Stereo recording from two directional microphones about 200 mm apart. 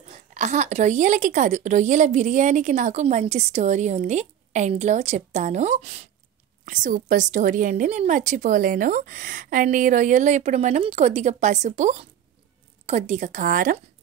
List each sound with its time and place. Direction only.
0.3 s a woman's voice: 35° right (ahead or behind)